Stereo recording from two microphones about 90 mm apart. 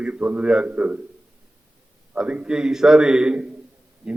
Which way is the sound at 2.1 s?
10° right (ahead or behind).